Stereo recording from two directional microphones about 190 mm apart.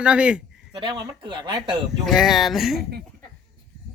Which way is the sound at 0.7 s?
25° right (ahead or behind).